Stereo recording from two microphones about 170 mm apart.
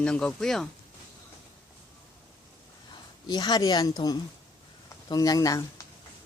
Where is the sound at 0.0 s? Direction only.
5° left (ahead or behind).